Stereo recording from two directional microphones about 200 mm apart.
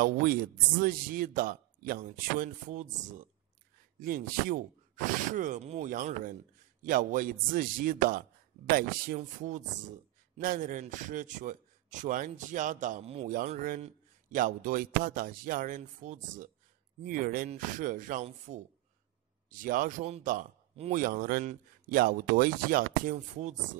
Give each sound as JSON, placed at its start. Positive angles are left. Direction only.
{"t": 0.0, "sound": "a man's voice", "side_deg": -45}
{"t": 13.3, "sound": "a man's voice", "side_deg": -45}
{"t": 21.0, "sound": "speech", "side_deg": -45}